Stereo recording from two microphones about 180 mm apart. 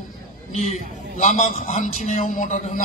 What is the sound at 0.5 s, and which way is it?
A man's voice, 40° left (ahead or behind).